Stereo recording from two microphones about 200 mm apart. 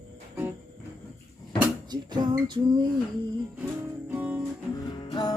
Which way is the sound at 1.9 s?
20° right (ahead or behind).